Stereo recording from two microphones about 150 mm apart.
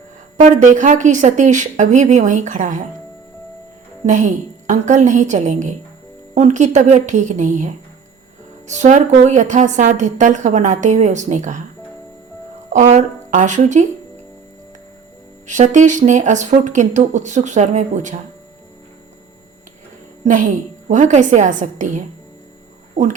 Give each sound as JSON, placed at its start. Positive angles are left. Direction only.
{"t": 0.4, "sound": "a woman's voice", "side_deg": -55}
{"t": 4.0, "sound": "a woman's voice", "side_deg": -55}
{"t": 12.7, "sound": "speech", "side_deg": -55}
{"t": 15.4, "sound": "speech", "side_deg": -55}
{"t": 20.2, "sound": "a woman's voice", "side_deg": -55}